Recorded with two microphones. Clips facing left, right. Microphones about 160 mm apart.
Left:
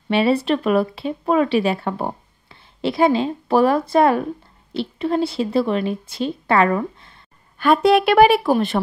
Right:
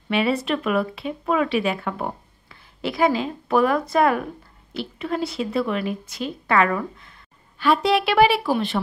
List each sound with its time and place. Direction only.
0.1 s a woman's voice: 30° left (ahead or behind)
7.5 s a woman's voice: 50° left (ahead or behind)